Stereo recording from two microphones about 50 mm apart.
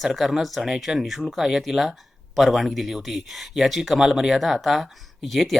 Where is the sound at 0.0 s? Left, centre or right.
Centre.